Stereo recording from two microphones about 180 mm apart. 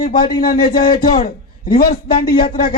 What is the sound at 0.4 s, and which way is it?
Speech, 50° left (ahead or behind).